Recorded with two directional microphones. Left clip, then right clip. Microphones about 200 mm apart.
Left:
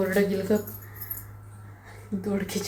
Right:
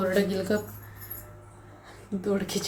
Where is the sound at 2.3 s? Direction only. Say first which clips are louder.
Right 1 dB; 10° right (ahead or behind).